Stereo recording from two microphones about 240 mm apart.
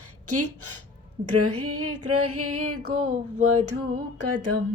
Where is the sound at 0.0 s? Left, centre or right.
Right.